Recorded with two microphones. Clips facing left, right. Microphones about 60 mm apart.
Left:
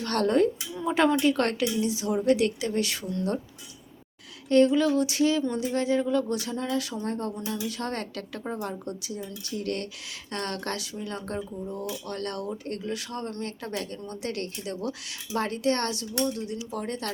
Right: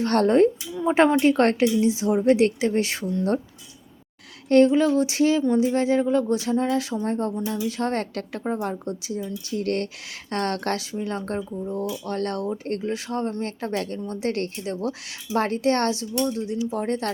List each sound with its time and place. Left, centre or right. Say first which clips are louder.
0.0 s a woman's voice: right 5 dB; right
4.4 s speech: right 4 dB; right
9.6 s a woman's voice: right 6 dB; right
16.7 s speech: right 5 dB; right